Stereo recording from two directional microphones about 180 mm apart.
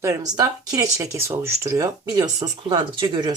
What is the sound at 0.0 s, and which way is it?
Speech, 15° right (ahead or behind).